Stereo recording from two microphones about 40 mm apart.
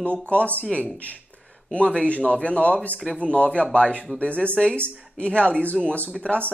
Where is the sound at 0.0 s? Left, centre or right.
Left.